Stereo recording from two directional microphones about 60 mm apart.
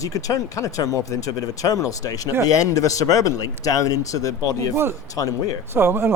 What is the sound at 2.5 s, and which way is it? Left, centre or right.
Speech, left.